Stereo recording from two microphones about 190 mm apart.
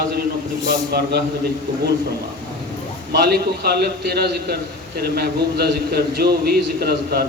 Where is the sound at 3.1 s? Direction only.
60° right (ahead or behind).